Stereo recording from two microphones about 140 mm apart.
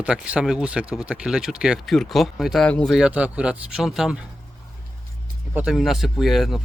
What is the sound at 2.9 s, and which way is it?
Speech, 10° right (ahead or behind).